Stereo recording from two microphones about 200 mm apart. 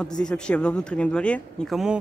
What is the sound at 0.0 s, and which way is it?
Speech, 5° left (ahead or behind).